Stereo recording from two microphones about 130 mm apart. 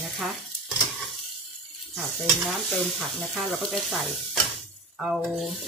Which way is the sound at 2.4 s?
Centre (ahead or behind).